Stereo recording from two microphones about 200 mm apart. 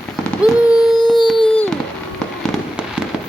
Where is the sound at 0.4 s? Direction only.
Centre (ahead or behind).